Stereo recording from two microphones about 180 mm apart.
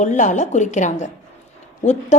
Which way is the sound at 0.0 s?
45° left (ahead or behind).